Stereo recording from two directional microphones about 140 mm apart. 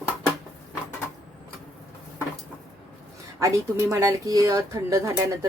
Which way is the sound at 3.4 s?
20° right (ahead or behind).